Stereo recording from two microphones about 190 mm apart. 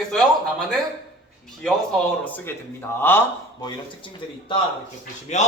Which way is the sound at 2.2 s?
10° left (ahead or behind).